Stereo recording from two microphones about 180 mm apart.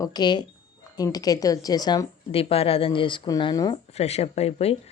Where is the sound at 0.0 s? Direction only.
25° left (ahead or behind).